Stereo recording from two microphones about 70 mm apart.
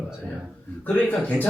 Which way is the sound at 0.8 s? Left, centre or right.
Left.